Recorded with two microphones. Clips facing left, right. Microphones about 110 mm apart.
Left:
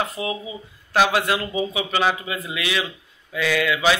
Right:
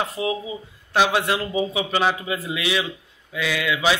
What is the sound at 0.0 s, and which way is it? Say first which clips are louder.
Speech: right 1 dB; 30° right (ahead or behind).